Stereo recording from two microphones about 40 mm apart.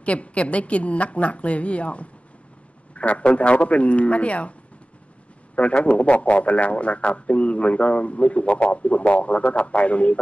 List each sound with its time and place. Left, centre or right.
0.0 s a man's voice: left
5.6 s a man's voice: left